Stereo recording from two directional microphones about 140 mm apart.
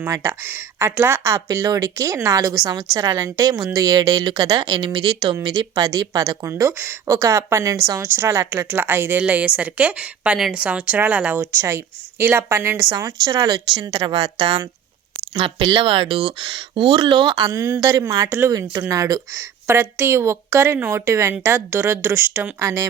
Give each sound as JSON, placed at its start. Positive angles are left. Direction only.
{"t": 0.0, "sound": "a woman's voice", "side_deg": -20}
{"t": 5.8, "sound": "a woman's voice", "side_deg": -25}
{"t": 12.9, "sound": "a woman's voice", "side_deg": -30}